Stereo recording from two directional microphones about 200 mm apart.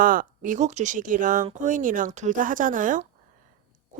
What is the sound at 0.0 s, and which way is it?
A woman's voice, 45° right (ahead or behind).